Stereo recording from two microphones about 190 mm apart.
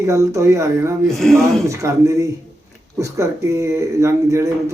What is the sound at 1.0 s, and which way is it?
Speech, centre (ahead or behind).